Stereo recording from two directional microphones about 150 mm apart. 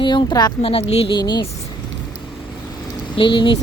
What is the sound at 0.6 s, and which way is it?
Speech, 40° left (ahead or behind).